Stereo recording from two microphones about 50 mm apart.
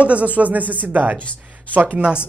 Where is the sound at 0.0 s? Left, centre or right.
Right.